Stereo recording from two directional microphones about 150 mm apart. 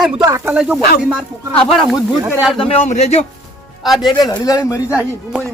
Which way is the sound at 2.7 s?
50° left (ahead or behind).